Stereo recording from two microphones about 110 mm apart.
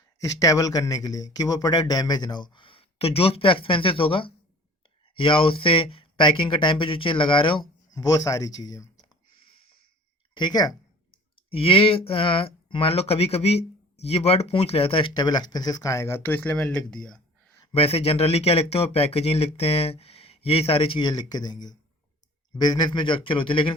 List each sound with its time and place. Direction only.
0.2 s speech: 30° left (ahead or behind); by 7.6 s 50° left (ahead or behind)
7.9 s speech: 35° left (ahead or behind)
10.3 s speech: 40° left (ahead or behind)
11.5 s speech: 55° left (ahead or behind); by 17.2 s 5° left (ahead or behind)
17.7 s speech: 65° left (ahead or behind)
21.0 s speech: 40° left (ahead or behind)